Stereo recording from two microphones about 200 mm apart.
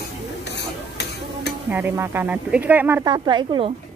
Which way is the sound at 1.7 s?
10° right (ahead or behind).